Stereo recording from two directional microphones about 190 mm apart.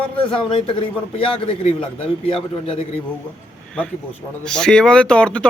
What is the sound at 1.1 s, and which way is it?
A man's voice, 30° left (ahead or behind).